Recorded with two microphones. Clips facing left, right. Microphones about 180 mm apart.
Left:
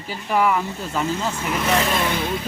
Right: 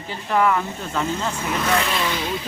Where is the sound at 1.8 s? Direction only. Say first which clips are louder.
Left 2 dB; 50° left (ahead or behind).